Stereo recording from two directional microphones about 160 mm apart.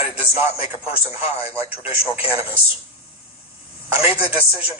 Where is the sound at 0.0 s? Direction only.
35° left (ahead or behind).